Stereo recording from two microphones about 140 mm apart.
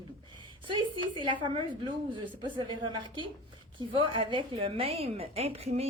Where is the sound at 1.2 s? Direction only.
35° right (ahead or behind).